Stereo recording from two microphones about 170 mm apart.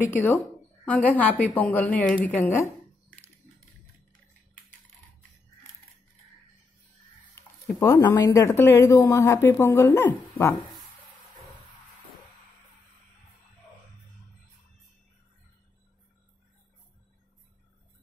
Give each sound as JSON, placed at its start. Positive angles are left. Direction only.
{"t": 0.1, "sound": "speech", "side_deg": 10}
{"t": 2.2, "sound": "a sound", "side_deg": 10}
{"t": 7.3, "sound": "speech", "side_deg": 15}